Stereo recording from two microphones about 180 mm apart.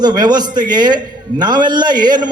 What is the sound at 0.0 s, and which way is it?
A man's voice, 25° right (ahead or behind).